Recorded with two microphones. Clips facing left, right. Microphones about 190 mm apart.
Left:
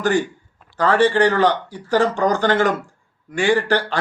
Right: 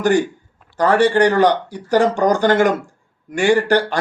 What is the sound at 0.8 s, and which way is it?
Speech, 15° right (ahead or behind).